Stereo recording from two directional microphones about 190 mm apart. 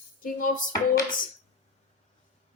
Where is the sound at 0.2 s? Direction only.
45° left (ahead or behind).